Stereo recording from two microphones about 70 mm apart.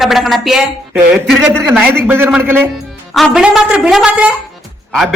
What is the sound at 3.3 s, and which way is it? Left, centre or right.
Speech, centre.